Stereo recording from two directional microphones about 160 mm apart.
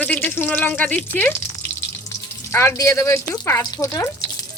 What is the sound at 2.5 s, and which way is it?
Speech, 15° left (ahead or behind).